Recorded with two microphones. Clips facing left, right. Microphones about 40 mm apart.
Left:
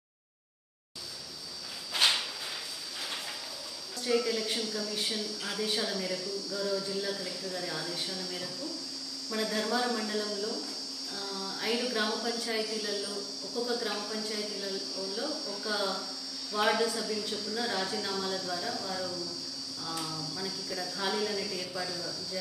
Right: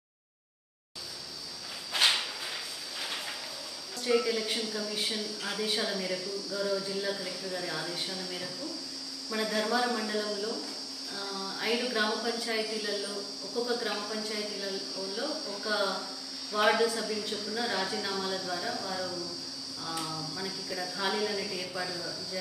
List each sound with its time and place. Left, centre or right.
2.0 s a sound: centre
4.0 s speech: centre
15.3 s speech: right
15.6 s speech: centre